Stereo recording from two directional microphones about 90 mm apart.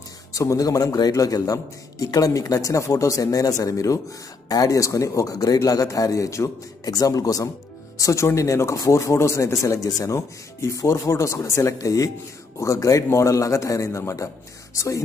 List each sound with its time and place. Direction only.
0.3 s speech: 40° left (ahead or behind)